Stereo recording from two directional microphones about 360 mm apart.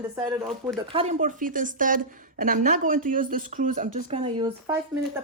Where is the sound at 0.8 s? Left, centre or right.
Centre.